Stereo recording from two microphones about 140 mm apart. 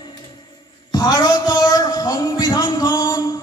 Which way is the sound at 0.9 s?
30° left (ahead or behind).